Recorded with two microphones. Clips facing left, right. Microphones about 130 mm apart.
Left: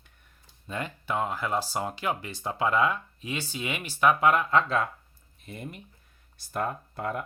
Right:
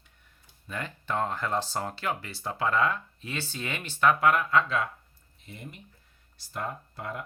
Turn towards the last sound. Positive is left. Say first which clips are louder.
# left 5 dB
turn(degrees=50)  # may be behind; listen again after turning